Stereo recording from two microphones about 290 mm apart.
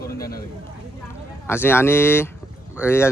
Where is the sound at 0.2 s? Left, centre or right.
Left.